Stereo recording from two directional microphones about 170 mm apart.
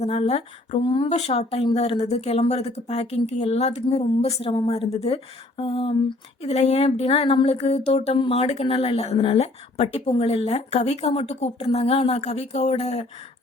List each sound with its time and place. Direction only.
0.0 s a woman's voice: 35° left (ahead or behind)